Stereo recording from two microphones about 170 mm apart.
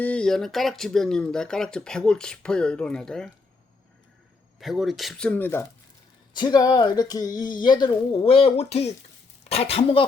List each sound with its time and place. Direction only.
0.0 s speech: 5° left (ahead or behind)
4.6 s speech: centre (ahead or behind)
6.3 s speech: 25° left (ahead or behind)